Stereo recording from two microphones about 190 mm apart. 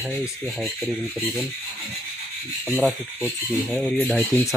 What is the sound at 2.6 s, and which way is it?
Speech, centre (ahead or behind).